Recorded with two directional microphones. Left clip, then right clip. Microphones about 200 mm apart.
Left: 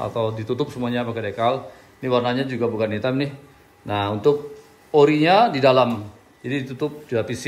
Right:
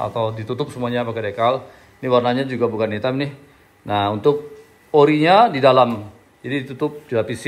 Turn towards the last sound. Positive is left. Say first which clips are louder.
# right 3 dB
turn(degrees=10)  # may be behind; listen again after turning